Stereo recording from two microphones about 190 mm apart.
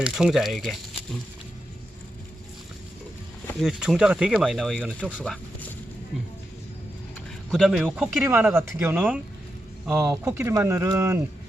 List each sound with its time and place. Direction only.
0.0 s speech: 5° right (ahead or behind)
3.6 s speech: 5° right (ahead or behind)
7.5 s speech: centre (ahead or behind); by 11.2 s 15° right (ahead or behind)